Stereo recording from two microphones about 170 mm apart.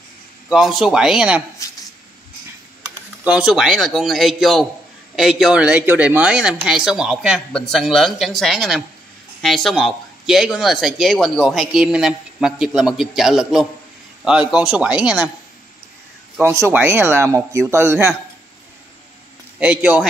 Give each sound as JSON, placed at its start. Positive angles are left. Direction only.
{"t": 0.5, "sound": "speech", "side_deg": 0}
{"t": 1.6, "sound": "a sound", "side_deg": 20}
{"t": 3.3, "sound": "speech", "side_deg": -5}
{"t": 16.3, "sound": "a man's voice", "side_deg": -15}
{"t": 19.6, "sound": "a man's voice", "side_deg": -10}